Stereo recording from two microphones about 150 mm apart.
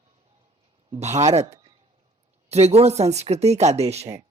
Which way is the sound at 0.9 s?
45° right (ahead or behind).